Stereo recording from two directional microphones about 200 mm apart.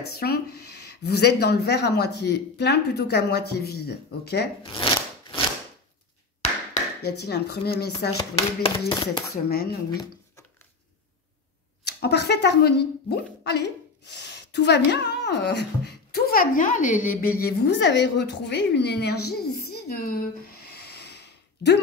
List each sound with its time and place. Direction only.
0.0 s speech: 50° left (ahead or behind)
4.6 s shuffling cards: 25° left (ahead or behind)
7.0 s a woman's voice: 55° left (ahead or behind)
8.2 s speech: 25° left (ahead or behind)
9.5 s speech: 50° left (ahead or behind)
9.8 s speech: 20° left (ahead or behind)
11.8 s a woman's voice: 55° left (ahead or behind)
19.2 s a sound: 50° left (ahead or behind)